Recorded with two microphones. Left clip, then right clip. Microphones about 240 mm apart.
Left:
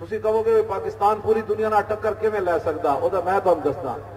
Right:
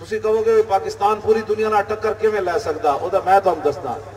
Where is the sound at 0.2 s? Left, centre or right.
Right.